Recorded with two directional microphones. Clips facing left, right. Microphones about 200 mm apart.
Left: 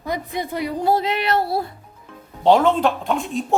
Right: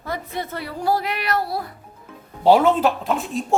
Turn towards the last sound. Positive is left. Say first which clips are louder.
# left 1 dB
turn(degrees=0)  # may be behind; listen again after turning